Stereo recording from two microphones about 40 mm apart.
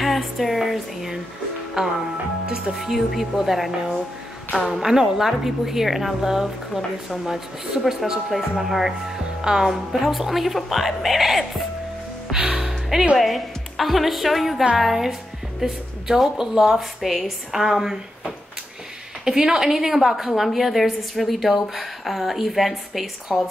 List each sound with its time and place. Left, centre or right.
0.0 s a sound: centre
1.8 s a woman's voice: centre
2.7 s a woman's voice: centre
4.7 s a woman's voice: centre
9.4 s a woman's voice: centre
9.7 s a woman's voice: centre
12.5 s music: centre
13.2 s a woman's voice: centre
17.0 s a woman's voice: centre